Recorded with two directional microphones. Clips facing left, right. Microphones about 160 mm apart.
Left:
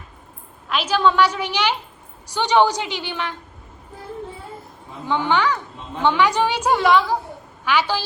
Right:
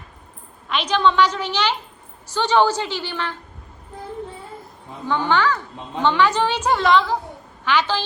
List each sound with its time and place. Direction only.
0.7 s a woman's voice: 5° left (ahead or behind)
5.0 s a woman's voice: 15° left (ahead or behind)